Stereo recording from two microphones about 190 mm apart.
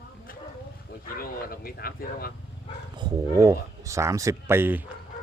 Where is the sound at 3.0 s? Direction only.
15° right (ahead or behind).